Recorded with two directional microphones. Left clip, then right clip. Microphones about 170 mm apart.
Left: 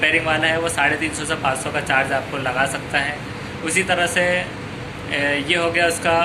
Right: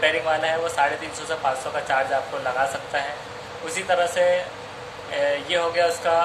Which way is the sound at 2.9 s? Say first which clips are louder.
Left 5 dB; 15° right (ahead or behind).